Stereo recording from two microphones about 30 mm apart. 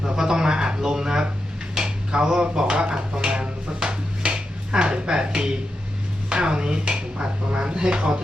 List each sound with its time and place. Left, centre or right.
0.0 s a sound: centre
1.8 s dishes: right
6.2 s chopping: right
6.8 s speech: right